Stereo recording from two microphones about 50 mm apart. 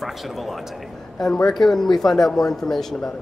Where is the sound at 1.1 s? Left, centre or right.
Centre.